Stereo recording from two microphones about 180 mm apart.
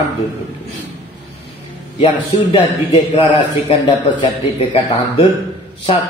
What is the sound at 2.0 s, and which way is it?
Speech, 30° left (ahead or behind).